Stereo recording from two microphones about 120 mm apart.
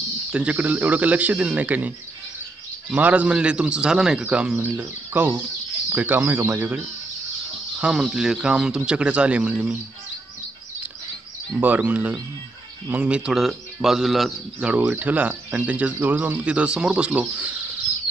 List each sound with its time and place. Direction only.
0.3 s a man's voice: 10° right (ahead or behind)
7.8 s a man's voice: 5° right (ahead or behind)
11.5 s a man's voice: 15° right (ahead or behind)